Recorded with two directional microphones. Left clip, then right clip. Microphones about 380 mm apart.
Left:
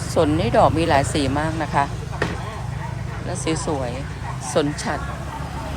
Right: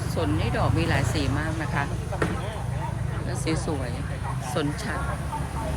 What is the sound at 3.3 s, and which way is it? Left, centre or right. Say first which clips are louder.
Speech: left 6 dB; centre.